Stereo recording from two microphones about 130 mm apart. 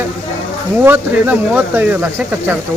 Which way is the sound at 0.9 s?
15° right (ahead or behind).